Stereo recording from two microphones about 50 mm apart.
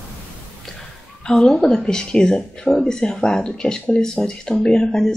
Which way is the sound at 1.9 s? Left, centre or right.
Centre.